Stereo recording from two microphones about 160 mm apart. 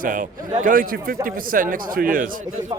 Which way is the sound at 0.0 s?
55° right (ahead or behind).